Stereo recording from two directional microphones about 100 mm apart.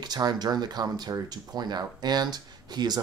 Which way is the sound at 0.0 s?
40° right (ahead or behind).